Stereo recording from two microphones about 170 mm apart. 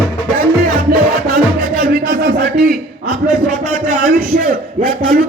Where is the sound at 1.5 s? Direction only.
70° right (ahead or behind).